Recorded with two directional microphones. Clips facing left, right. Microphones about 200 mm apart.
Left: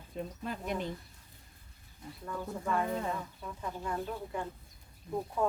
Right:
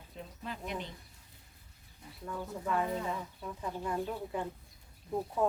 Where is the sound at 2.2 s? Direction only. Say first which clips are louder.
Left 1 dB; 5° right (ahead or behind).